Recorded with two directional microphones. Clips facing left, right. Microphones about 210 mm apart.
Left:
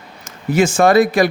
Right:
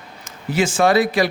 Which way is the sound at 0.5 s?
45° left (ahead or behind).